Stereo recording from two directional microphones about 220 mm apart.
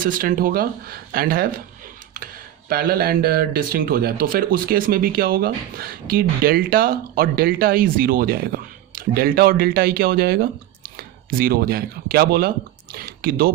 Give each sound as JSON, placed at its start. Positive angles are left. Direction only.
{"t": 0.0, "sound": "speech", "side_deg": -40}
{"t": 2.6, "sound": "speech", "side_deg": -45}